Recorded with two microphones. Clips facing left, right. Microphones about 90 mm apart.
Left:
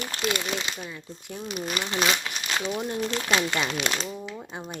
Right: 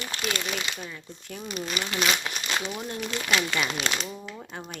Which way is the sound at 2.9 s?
30° left (ahead or behind).